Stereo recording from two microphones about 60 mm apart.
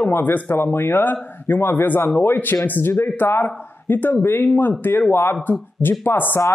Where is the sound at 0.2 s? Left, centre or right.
Left.